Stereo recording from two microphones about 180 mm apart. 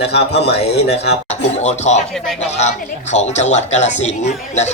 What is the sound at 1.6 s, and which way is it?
Speech, 40° left (ahead or behind).